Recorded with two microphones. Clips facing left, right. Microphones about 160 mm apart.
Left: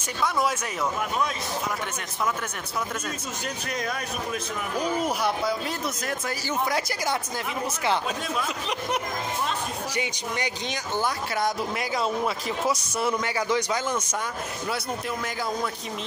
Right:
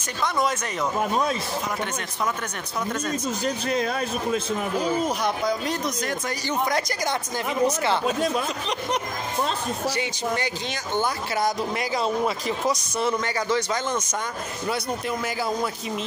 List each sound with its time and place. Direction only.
0.2 s speech: 5° left (ahead or behind)
0.9 s speech: 35° right (ahead or behind)
3.4 s speech: 30° right (ahead or behind)
5.0 s speech: 5° left (ahead or behind)
9.9 s speech: 15° left (ahead or behind)
11.0 s speech: centre (ahead or behind)
14.7 s speech: centre (ahead or behind)